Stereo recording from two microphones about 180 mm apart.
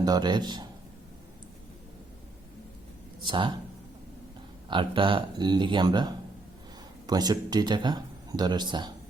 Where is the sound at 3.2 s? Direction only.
25° right (ahead or behind).